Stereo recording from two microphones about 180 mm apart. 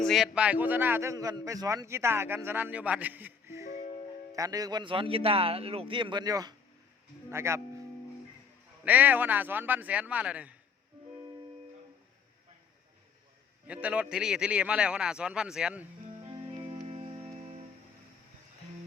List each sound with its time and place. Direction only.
0.0 s a man's voice: centre (ahead or behind)
8.8 s a man's voice: 10° right (ahead or behind)
13.8 s speech: 5° right (ahead or behind)
16.3 s music: 35° right (ahead or behind)